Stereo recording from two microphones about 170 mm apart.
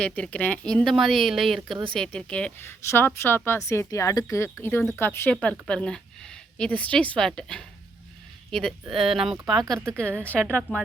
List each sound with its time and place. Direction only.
0.0 s a woman's voice: 5° left (ahead or behind)